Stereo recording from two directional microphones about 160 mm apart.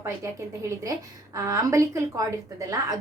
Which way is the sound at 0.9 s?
20° right (ahead or behind).